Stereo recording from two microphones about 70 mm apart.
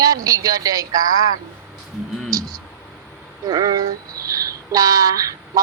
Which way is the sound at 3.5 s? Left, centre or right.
Right.